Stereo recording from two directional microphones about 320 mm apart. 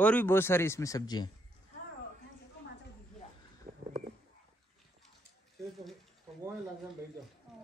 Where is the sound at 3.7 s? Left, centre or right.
Centre.